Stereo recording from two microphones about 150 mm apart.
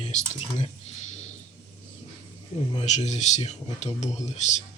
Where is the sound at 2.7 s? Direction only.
45° left (ahead or behind).